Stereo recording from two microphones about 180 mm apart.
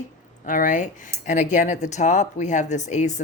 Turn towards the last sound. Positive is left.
turn(degrees=40)  # may be behind; listen again after turning